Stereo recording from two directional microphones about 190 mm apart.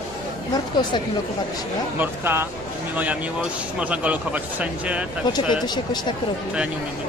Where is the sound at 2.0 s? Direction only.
10° right (ahead or behind).